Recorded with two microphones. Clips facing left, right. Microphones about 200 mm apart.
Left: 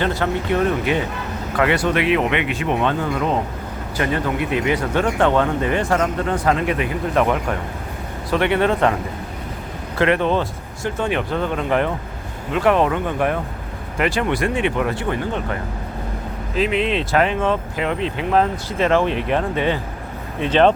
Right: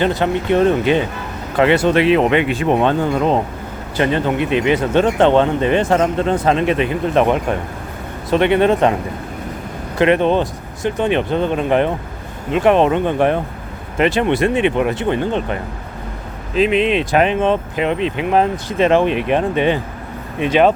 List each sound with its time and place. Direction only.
0.0 s speech: 20° right (ahead or behind)
10.0 s speech: 20° right (ahead or behind)
16.6 s speech: 20° right (ahead or behind)